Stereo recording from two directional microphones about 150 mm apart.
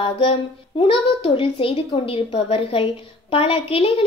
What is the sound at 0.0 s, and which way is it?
A woman's voice, 40° left (ahead or behind).